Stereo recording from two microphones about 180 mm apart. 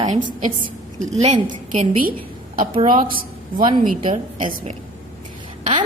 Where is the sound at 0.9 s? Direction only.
40° right (ahead or behind).